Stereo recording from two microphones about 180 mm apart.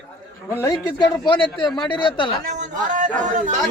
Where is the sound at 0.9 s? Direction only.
25° left (ahead or behind).